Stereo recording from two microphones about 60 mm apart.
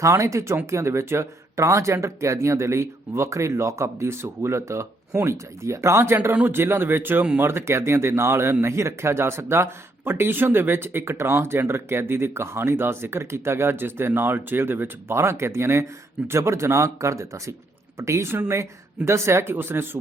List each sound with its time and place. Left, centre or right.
0.0 s speech: right